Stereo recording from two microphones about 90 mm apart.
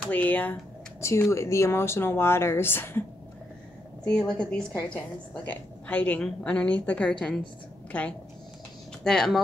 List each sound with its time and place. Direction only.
0.1 s a woman's voice: 15° left (ahead or behind)
1.0 s speech: 30° left (ahead or behind)
4.0 s a woman's voice: 10° left (ahead or behind)